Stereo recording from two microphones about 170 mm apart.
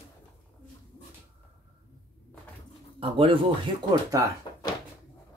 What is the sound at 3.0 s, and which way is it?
Speech, 30° right (ahead or behind).